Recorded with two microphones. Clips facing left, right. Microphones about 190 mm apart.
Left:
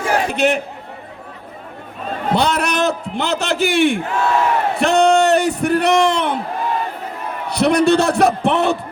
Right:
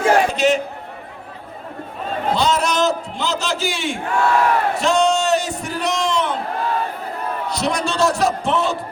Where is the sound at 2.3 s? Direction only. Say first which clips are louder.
Left 1 dB; 60° left (ahead or behind).